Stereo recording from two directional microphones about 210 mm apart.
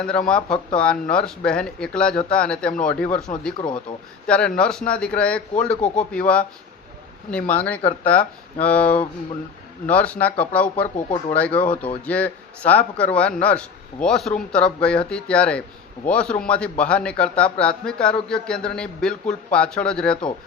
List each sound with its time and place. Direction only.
0.0 s a man's voice: 5° left (ahead or behind)
5.7 s speech: 35° left (ahead or behind)
6.1 s a man's voice: 5° left (ahead or behind)